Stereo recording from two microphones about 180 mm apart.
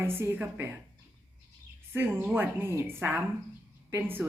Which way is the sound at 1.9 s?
15° right (ahead or behind).